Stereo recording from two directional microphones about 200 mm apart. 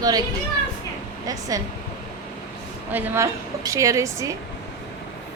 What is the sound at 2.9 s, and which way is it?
A woman's voice, 10° right (ahead or behind).